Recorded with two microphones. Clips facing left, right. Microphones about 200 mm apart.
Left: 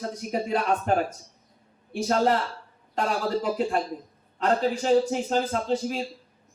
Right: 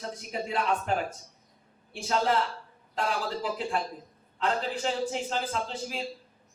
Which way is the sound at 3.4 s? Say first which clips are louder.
Left 5 dB; 45° left (ahead or behind).